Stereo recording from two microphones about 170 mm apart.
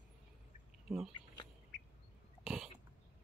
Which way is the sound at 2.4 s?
5° right (ahead or behind).